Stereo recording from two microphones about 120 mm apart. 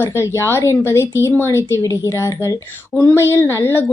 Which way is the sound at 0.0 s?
20° left (ahead or behind).